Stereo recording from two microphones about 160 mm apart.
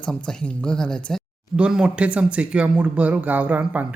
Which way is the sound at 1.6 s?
5° right (ahead or behind).